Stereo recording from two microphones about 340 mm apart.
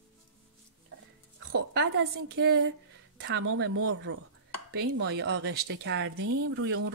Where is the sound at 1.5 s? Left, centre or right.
Right.